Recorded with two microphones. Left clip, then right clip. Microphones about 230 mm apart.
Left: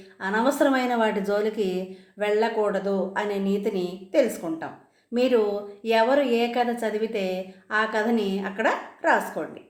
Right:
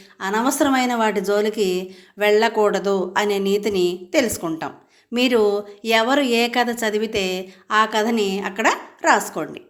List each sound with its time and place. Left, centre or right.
0.2 s speech: right